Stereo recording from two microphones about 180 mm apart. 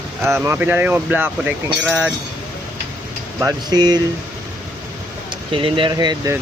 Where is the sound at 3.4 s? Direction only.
25° right (ahead or behind).